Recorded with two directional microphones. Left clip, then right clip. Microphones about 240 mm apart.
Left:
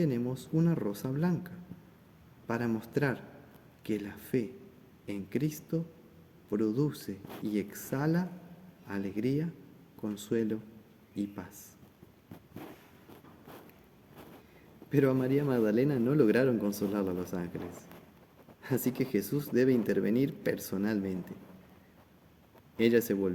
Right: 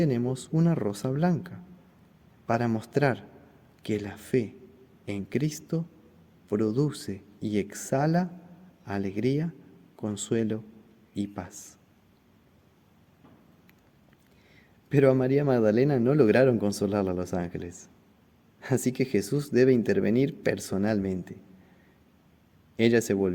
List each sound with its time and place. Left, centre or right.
0.0 s a man's voice: right
14.8 s a man's voice: right
22.8 s a man's voice: right